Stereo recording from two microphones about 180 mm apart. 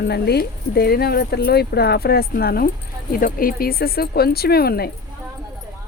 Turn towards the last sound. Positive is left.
turn(degrees=60)  # may be behind; listen again after turning